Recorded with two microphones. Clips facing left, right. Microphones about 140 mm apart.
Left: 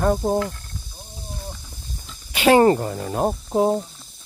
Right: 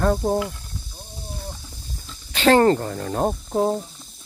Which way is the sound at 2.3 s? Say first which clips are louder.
Left 1 dB; 10° left (ahead or behind).